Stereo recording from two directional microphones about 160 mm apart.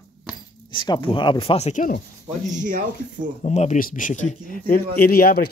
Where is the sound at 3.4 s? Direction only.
45° left (ahead or behind).